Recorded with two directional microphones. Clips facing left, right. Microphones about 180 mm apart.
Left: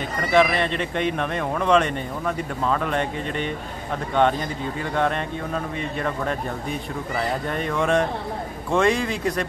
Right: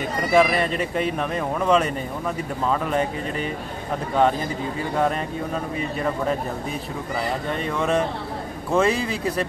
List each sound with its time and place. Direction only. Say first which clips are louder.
0.3 s speech: even; 5° right (ahead or behind)
7.5 s speech: left 1 dB; centre (ahead or behind)